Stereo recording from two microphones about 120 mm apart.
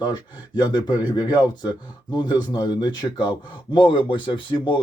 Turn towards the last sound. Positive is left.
turn(degrees=40)  # may be behind; listen again after turning